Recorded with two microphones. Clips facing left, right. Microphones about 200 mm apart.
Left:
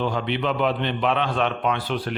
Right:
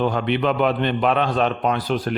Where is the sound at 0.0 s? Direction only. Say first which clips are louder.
Right 4 dB; 55° right (ahead or behind).